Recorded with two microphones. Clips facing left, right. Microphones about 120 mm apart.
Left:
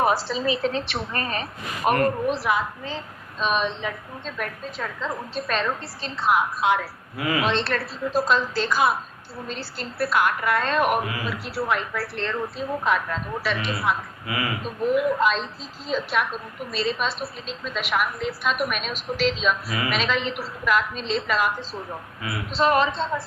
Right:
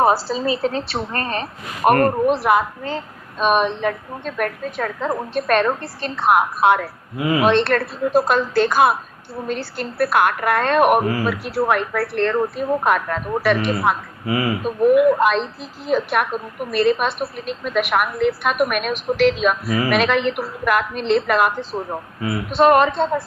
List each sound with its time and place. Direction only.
0.0 s a woman's voice: 35° right (ahead or behind)
1.9 s a woman's voice: 50° right (ahead or behind)
7.2 s speech: 25° right (ahead or behind)
7.4 s a woman's voice: 55° right (ahead or behind)
11.0 s a woman's voice: 40° right (ahead or behind)
11.3 s a woman's voice: 55° right (ahead or behind)
14.3 s speech: 30° right (ahead or behind)
14.6 s a woman's voice: 55° right (ahead or behind)